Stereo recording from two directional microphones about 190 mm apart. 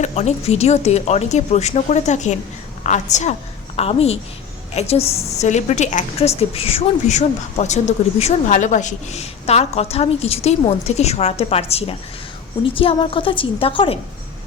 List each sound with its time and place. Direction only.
0.0 s a woman's voice: 35° left (ahead or behind)